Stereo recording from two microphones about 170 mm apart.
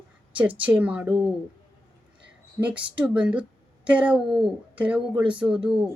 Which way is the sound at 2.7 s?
30° right (ahead or behind).